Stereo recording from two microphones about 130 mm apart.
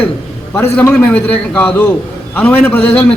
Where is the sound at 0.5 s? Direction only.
15° left (ahead or behind).